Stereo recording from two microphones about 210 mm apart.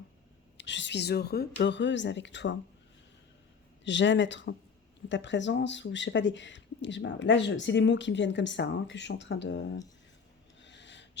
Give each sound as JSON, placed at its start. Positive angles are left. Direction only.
{"t": 0.5, "sound": "speech", "side_deg": 60}
{"t": 3.8, "sound": "speech", "side_deg": 60}
{"t": 10.6, "sound": "a sound", "side_deg": 55}